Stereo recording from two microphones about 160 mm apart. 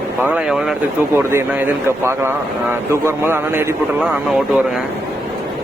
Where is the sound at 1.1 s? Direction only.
15° right (ahead or behind).